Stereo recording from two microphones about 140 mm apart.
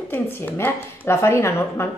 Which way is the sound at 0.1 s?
15° left (ahead or behind).